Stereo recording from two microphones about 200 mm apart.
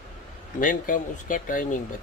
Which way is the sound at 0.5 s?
40° left (ahead or behind).